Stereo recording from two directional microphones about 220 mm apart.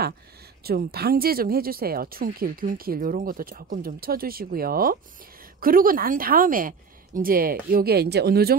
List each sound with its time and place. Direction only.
0.7 s speech: 45° right (ahead or behind)